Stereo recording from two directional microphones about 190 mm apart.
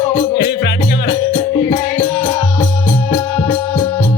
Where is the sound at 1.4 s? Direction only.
20° left (ahead or behind).